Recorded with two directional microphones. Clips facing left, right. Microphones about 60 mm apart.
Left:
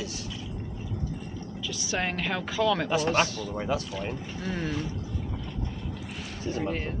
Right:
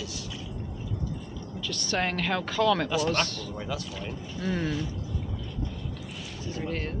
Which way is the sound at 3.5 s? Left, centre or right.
Left.